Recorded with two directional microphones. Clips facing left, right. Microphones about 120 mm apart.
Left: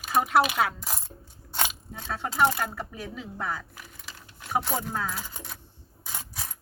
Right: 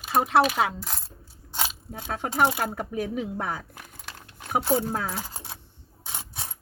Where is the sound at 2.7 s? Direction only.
55° right (ahead or behind).